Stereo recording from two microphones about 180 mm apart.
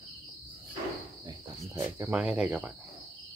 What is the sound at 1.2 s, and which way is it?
Cricket, 15° right (ahead or behind).